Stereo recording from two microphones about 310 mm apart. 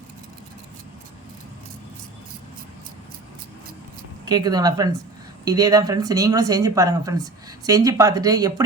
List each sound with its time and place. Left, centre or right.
4.3 s speech: centre